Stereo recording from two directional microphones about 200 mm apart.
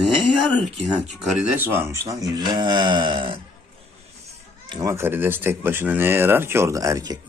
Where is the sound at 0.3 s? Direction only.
Centre (ahead or behind); by 3.4 s 25° right (ahead or behind).